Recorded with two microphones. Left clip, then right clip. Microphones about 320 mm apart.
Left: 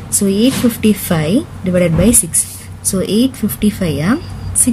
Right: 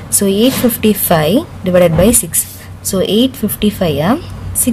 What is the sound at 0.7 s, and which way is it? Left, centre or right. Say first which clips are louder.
A woman's voice: right 4 dB; centre.